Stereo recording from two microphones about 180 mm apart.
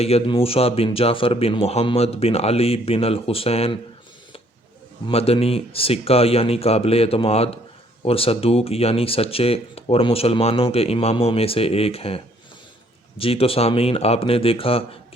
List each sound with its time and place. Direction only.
0.0 s speech: 35° left (ahead or behind)
5.0 s speech: 35° left (ahead or behind)